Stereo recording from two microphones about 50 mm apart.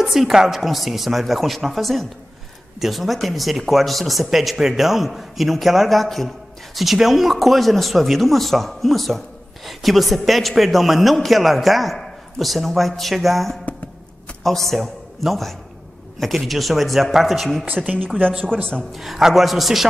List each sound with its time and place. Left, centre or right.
0.0 s a man's voice: centre
17.8 s speech: right
18.9 s a man's voice: centre